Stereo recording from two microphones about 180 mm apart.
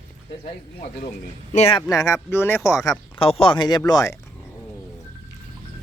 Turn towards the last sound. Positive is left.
turn(degrees=20)  # may be behind; listen again after turning